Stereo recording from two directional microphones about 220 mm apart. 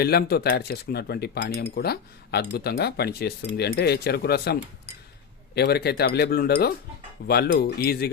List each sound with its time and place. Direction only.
0.0 s speech: 45° left (ahead or behind)
5.5 s speech: 45° left (ahead or behind)